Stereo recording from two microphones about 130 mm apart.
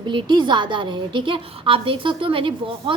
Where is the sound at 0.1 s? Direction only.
35° right (ahead or behind).